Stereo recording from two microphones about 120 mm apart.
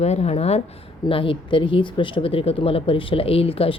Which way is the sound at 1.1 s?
45° left (ahead or behind).